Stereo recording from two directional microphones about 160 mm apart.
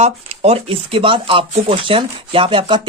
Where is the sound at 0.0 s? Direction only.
40° right (ahead or behind).